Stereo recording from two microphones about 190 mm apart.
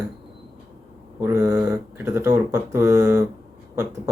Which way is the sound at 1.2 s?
20° right (ahead or behind).